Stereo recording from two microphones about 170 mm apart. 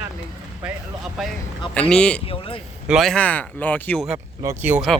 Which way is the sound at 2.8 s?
Centre (ahead or behind).